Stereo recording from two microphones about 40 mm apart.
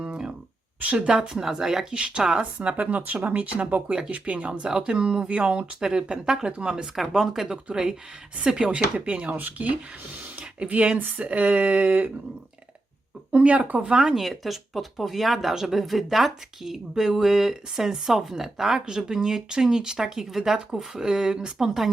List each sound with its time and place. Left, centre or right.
0.1 s a sound: centre
0.9 s speech: right
1.4 s speech: centre
1.9 s speech: right
2.4 s speech: right
6.9 s speech: centre
7.5 s speech: right
9.3 s speech: right
13.3 s speech: right
13.8 s speech: centre
14.2 s speech: centre